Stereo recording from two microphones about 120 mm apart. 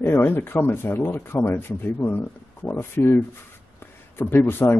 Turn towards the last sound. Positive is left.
turn(degrees=20)  # may be behind; listen again after turning